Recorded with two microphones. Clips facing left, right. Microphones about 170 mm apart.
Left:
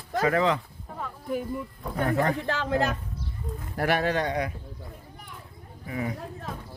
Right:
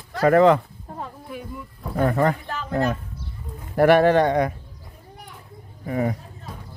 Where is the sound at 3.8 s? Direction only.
55° right (ahead or behind).